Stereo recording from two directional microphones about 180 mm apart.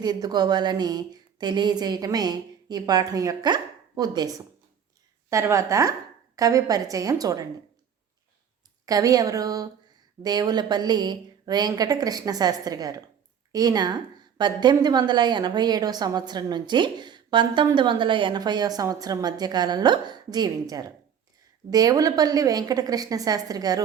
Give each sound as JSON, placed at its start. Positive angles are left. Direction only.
{"t": 0.0, "sound": "a woman's voice", "side_deg": -25}
{"t": 8.9, "sound": "a woman's voice", "side_deg": -20}